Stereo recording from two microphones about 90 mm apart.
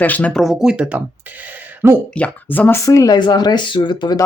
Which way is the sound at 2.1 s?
15° left (ahead or behind).